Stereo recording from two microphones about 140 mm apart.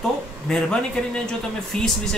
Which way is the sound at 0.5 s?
5° left (ahead or behind).